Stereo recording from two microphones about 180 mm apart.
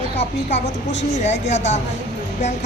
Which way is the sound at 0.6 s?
80° left.